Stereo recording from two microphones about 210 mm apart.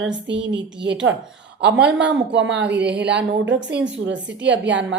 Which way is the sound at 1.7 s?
5° right (ahead or behind).